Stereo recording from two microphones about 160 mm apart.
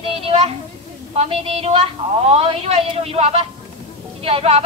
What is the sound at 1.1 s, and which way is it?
A woman's voice, 40° right (ahead or behind).